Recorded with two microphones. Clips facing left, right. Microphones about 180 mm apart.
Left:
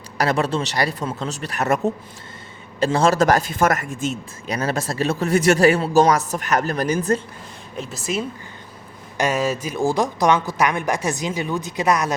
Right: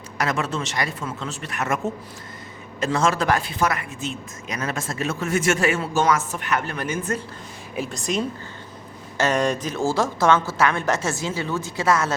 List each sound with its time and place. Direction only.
0.2 s a man's voice: 35° left (ahead or behind)
2.8 s speech: 35° left (ahead or behind)
4.4 s a man's voice: 35° left (ahead or behind)
7.8 s a woman's voice: 5° left (ahead or behind)